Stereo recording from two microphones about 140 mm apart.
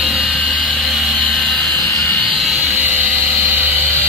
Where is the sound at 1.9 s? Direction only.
10° left (ahead or behind).